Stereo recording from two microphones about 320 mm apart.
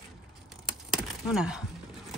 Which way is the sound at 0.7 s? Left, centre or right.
Centre.